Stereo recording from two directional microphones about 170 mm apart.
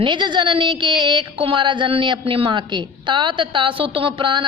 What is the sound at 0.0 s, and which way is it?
A woman's voice, 25° right (ahead or behind).